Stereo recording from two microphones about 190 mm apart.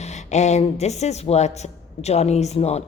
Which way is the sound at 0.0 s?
35° left (ahead or behind).